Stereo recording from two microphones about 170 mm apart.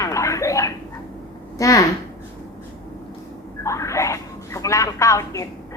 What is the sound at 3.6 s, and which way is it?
Speech, 20° left (ahead or behind).